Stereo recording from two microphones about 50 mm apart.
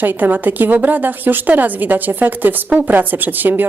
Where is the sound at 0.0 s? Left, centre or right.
Right.